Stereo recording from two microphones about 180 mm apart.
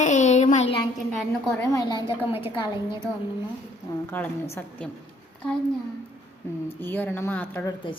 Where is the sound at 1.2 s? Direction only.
5° left (ahead or behind).